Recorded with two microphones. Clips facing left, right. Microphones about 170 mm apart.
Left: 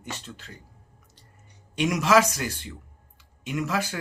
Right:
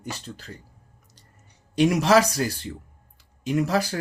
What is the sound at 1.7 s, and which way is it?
Speech, 35° right (ahead or behind).